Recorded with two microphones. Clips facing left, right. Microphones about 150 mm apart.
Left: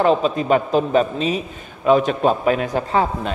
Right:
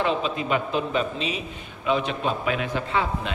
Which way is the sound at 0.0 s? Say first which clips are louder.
Left 8 dB; 40° left (ahead or behind).